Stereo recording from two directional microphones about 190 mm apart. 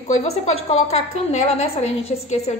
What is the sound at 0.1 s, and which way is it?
A woman's voice, 35° left (ahead or behind).